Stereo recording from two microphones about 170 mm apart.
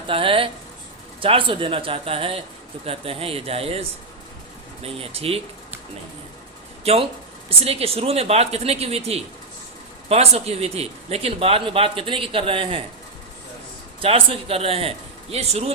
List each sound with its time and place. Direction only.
0.1 s speech: 30° right (ahead or behind)
6.8 s speech: 35° right (ahead or behind)
14.0 s speech: 35° right (ahead or behind)